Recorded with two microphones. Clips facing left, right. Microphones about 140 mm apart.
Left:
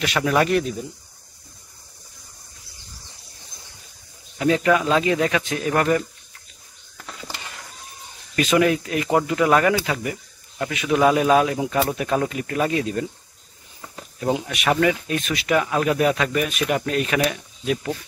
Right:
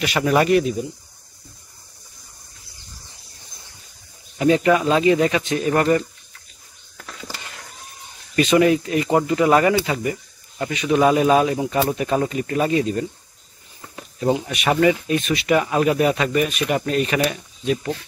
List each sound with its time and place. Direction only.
0.0 s speech: 5° right (ahead or behind)
4.4 s speech: 5° right (ahead or behind)
8.4 s speech: centre (ahead or behind)
14.5 s speech: centre (ahead or behind)